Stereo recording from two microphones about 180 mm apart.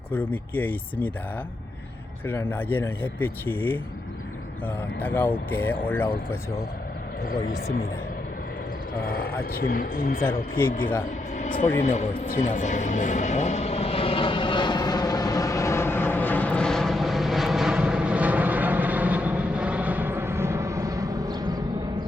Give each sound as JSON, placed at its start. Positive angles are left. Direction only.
{"t": 0.1, "sound": "speech", "side_deg": 10}
{"t": 2.2, "sound": "speech", "side_deg": 10}
{"t": 7.3, "sound": "speech", "side_deg": 55}
{"t": 9.0, "sound": "speech", "side_deg": 55}
{"t": 11.3, "sound": "a sound", "side_deg": 45}